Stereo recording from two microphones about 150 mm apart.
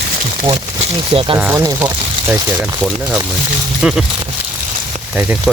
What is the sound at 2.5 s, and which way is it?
Speech, 5° right (ahead or behind).